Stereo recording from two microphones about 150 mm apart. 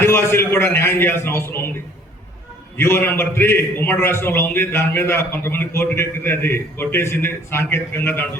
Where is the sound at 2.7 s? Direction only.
15° left (ahead or behind).